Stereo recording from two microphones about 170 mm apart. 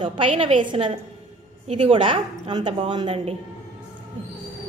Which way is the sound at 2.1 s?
25° right (ahead or behind).